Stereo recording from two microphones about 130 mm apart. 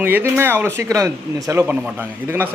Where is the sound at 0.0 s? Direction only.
15° right (ahead or behind).